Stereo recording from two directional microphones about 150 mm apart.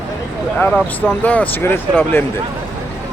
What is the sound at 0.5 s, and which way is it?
Speech, 10° left (ahead or behind).